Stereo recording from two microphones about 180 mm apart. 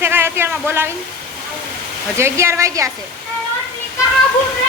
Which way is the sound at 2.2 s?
15° right (ahead or behind).